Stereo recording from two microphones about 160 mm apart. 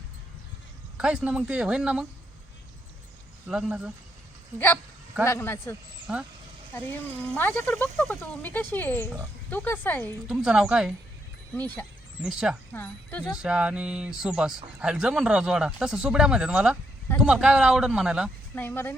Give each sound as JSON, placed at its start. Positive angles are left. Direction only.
{"t": 0.9, "sound": "speech", "side_deg": -5}
{"t": 3.5, "sound": "speech", "side_deg": -5}
{"t": 4.5, "sound": "speech", "side_deg": 10}
{"t": 6.1, "sound": "speech", "side_deg": -5}
{"t": 7.3, "sound": "speech", "side_deg": 10}
{"t": 10.2, "sound": "speech", "side_deg": -5}
{"t": 12.2, "sound": "speech", "side_deg": -5}
{"t": 12.7, "sound": "speech", "side_deg": 10}
{"t": 13.3, "sound": "speech", "side_deg": -5}
{"t": 18.5, "sound": "speech", "side_deg": 15}